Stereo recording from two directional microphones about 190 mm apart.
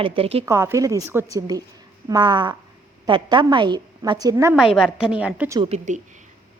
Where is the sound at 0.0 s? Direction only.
30° right (ahead or behind).